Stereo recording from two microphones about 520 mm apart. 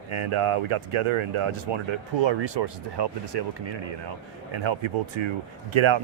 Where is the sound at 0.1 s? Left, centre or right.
Right.